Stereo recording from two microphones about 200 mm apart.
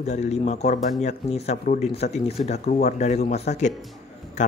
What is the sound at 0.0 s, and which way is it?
Speech, 35° left (ahead or behind).